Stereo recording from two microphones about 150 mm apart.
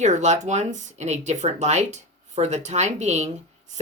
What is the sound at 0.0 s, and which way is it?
Speech, 50° right (ahead or behind).